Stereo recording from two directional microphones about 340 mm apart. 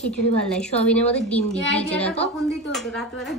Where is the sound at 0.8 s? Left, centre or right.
Centre.